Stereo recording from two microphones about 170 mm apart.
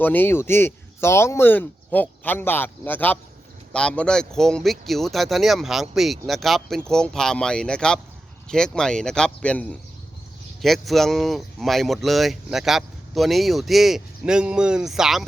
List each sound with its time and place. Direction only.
0.0 s speech: 10° left (ahead or behind)